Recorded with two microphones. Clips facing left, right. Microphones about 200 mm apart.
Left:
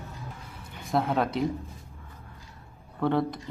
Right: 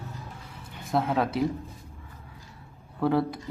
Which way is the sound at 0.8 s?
Centre (ahead or behind).